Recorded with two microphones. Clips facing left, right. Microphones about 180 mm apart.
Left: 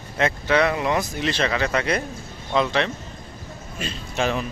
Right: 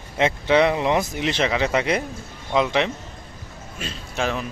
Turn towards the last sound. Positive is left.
turn(degrees=0)  # may be behind; listen again after turning